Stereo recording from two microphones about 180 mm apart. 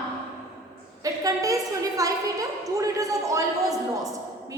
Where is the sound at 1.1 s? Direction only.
20° right (ahead or behind).